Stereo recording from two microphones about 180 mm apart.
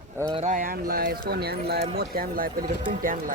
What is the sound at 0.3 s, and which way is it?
Speech, 45° right (ahead or behind).